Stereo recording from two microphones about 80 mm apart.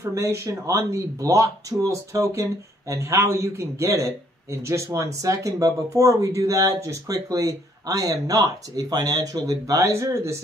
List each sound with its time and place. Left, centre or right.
0.0 s speech: right